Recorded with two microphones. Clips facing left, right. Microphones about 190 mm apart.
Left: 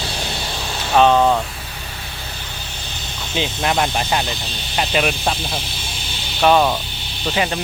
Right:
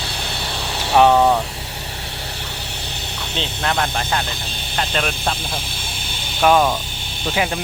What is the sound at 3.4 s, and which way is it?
Speech, 15° left (ahead or behind).